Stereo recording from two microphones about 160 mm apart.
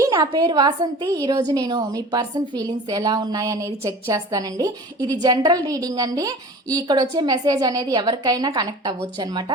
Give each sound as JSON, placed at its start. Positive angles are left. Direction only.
{"t": 0.0, "sound": "a woman's voice", "side_deg": -20}